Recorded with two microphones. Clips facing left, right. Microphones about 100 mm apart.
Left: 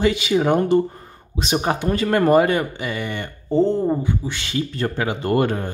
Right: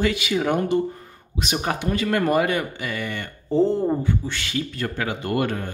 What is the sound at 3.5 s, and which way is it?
Speech, centre (ahead or behind).